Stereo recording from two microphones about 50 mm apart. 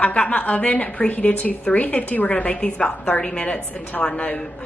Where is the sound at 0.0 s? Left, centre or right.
Left.